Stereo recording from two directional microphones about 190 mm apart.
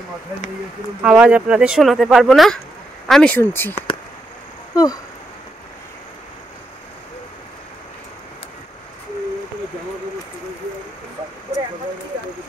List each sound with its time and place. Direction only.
1.0 s speech: 5° right (ahead or behind); by 3.7 s 10° left (ahead or behind)
4.7 s speech: 20° left (ahead or behind)